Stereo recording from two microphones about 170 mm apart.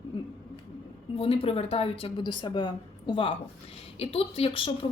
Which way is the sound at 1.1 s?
35° left (ahead or behind).